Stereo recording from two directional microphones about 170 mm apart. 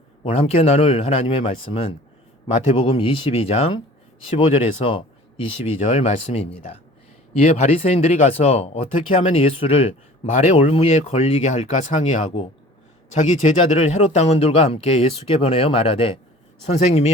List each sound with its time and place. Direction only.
0.2 s speech: 35° left (ahead or behind)
13.1 s speech: 45° left (ahead or behind)